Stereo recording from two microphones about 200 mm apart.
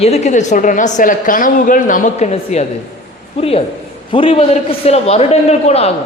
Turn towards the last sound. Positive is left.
turn(degrees=30)  # may be behind; listen again after turning